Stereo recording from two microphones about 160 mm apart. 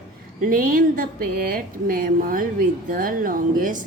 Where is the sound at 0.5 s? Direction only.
60° right (ahead or behind).